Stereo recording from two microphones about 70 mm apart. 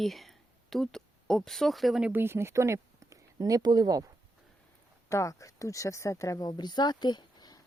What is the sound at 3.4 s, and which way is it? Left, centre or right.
Speech, right.